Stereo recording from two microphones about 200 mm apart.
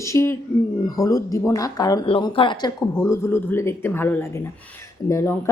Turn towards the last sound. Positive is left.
turn(degrees=15)  # may be behind; listen again after turning